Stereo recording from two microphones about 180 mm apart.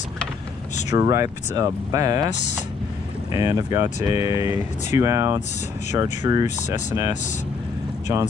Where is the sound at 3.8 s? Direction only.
35° left (ahead or behind).